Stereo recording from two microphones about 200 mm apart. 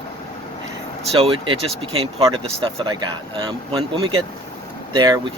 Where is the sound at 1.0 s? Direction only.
30° right (ahead or behind).